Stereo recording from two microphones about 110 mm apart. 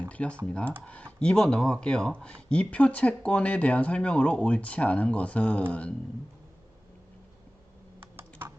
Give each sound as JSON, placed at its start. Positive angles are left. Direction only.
{"t": 0.1, "sound": "speech", "side_deg": 10}
{"t": 7.9, "sound": "computer keyboard", "side_deg": -20}